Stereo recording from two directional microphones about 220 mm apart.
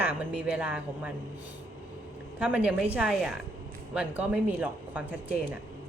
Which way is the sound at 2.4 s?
5° right (ahead or behind).